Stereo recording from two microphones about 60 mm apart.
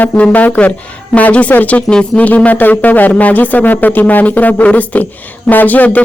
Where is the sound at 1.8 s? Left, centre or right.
Centre.